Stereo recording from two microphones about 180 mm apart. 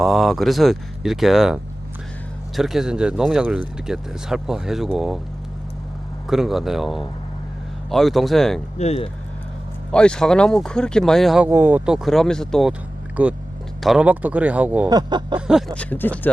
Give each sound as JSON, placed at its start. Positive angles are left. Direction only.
{"t": 0.0, "sound": "speech", "side_deg": 0}
{"t": 2.6, "sound": "speech", "side_deg": 0}
{"t": 6.2, "sound": "speech", "side_deg": 0}
{"t": 8.8, "sound": "speech", "side_deg": 35}
{"t": 9.9, "sound": "speech", "side_deg": 5}
{"t": 11.4, "sound": "speech", "side_deg": -10}
{"t": 14.8, "sound": "speech", "side_deg": -25}
{"t": 15.4, "sound": "speech", "side_deg": -5}
{"t": 15.7, "sound": "speech", "side_deg": 10}